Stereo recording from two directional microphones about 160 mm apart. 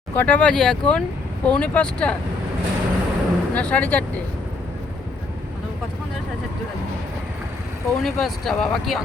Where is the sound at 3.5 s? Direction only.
10° left (ahead or behind).